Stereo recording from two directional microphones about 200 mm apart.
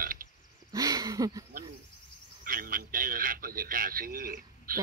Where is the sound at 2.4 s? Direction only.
45° right (ahead or behind).